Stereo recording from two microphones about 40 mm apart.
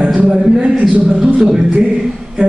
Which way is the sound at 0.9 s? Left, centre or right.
Right.